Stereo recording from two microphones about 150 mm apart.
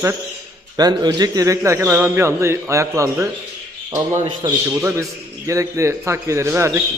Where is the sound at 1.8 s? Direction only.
10° right (ahead or behind).